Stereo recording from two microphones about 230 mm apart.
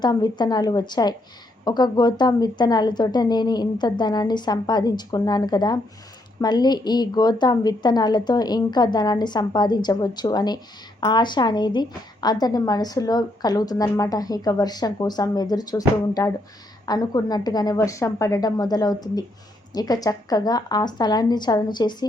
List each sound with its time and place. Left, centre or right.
0.0 s a woman's voice: centre
16.8 s a woman's voice: centre